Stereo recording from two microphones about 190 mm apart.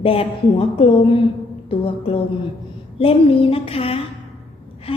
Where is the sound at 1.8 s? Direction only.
30° left (ahead or behind).